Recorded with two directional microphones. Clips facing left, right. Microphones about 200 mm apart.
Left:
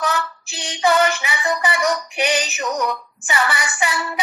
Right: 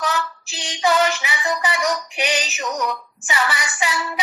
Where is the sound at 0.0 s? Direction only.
55° left (ahead or behind).